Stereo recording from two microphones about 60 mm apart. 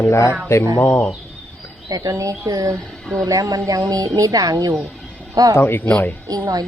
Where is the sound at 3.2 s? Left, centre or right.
Right.